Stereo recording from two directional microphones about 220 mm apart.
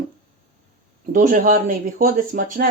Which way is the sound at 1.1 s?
35° right (ahead or behind).